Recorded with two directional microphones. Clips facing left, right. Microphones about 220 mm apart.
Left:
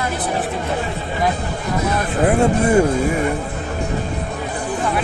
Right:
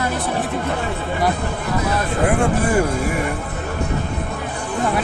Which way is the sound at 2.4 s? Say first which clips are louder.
Left 3 dB; 25° left (ahead or behind).